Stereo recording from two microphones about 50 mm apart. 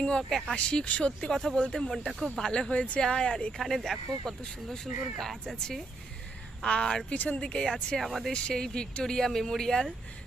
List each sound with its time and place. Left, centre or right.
0.1 s speech: centre
1.9 s speech: centre
2.4 s speech: centre
3.6 s speech: centre
6.6 s speech: centre
7.7 s speech: centre
8.3 s speech: centre